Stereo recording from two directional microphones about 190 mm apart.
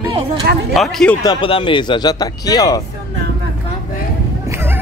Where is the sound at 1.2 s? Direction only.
25° left (ahead or behind).